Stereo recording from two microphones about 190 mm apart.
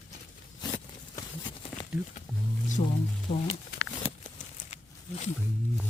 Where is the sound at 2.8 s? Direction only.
35° left (ahead or behind).